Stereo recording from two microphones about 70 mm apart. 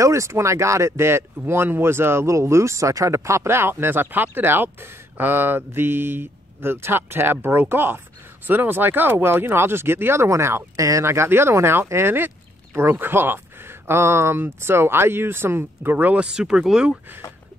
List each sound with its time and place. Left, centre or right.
0.0 s speech: right; by 17.0 s centre